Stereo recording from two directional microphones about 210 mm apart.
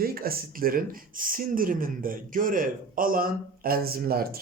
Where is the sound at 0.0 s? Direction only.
45° right (ahead or behind).